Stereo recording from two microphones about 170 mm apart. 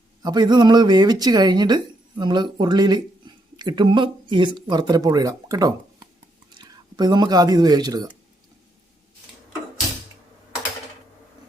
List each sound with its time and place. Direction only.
0.2 s a woman's voice: 25° right (ahead or behind)
3.3 s a sound: 25° right (ahead or behind)
3.6 s a woman's voice: 25° right (ahead or behind)